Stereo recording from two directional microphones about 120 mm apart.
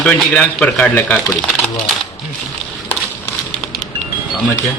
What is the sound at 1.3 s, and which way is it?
Speech, centre (ahead or behind).